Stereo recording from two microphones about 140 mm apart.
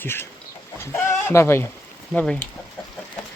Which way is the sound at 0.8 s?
20° left (ahead or behind).